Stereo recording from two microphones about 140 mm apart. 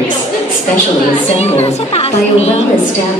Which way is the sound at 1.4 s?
50° left (ahead or behind).